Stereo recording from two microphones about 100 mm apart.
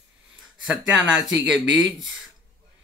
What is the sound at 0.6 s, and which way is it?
Speech, centre (ahead or behind).